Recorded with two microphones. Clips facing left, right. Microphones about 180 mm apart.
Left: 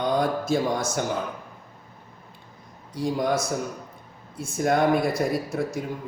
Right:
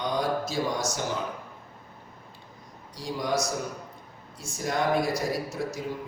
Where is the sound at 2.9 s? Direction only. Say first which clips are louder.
Left 4 dB; 55° left (ahead or behind).